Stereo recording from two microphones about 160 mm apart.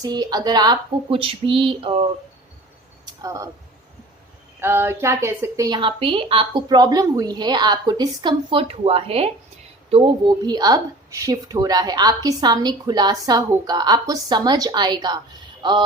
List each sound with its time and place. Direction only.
0.0 s a woman's voice: 25° right (ahead or behind)
3.1 s speech: 20° right (ahead or behind)
4.6 s a woman's voice: 15° right (ahead or behind)